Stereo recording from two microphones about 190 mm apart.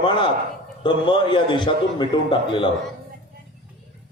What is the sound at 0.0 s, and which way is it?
A man's voice, 25° left (ahead or behind).